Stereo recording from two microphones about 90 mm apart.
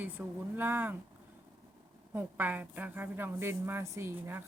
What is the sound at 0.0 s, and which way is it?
Speech, 20° right (ahead or behind).